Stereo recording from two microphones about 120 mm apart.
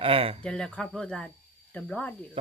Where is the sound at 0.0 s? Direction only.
50° right (ahead or behind).